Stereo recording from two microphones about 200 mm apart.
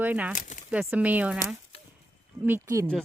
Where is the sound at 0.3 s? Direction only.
40° left (ahead or behind).